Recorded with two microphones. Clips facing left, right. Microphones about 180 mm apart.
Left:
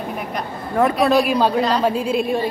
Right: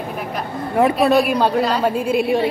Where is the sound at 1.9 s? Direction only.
60° right (ahead or behind).